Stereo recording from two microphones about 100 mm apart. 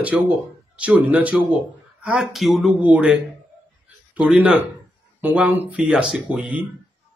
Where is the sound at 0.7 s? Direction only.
15° right (ahead or behind).